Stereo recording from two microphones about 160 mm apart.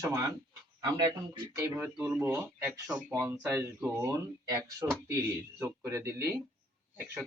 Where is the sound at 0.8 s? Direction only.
25° right (ahead or behind); by 3.0 s 5° right (ahead or behind).